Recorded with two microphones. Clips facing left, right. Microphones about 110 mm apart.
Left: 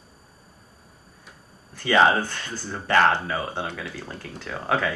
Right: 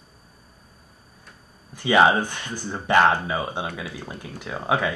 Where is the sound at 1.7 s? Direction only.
15° right (ahead or behind).